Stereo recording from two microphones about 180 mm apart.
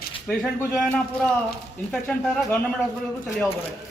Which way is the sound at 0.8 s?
5° left (ahead or behind).